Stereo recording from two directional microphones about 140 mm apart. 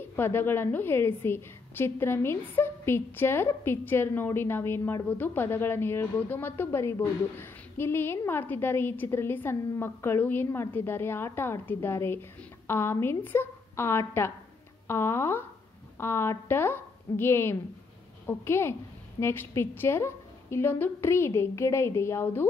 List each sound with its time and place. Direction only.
0.1 s a woman's voice: 15° left (ahead or behind)